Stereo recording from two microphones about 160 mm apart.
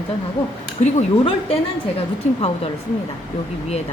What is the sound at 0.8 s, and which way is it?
Speech, 40° left (ahead or behind).